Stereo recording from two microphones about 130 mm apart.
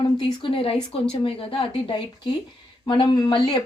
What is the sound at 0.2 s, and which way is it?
A woman's voice, 40° left (ahead or behind).